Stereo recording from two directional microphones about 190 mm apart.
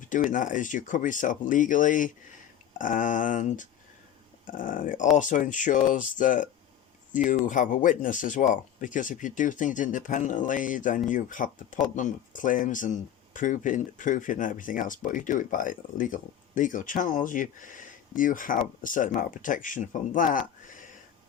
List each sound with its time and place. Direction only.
0.1 s speech: 45° left (ahead or behind)